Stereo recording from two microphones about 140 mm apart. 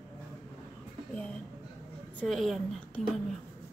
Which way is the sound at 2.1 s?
Centre (ahead or behind).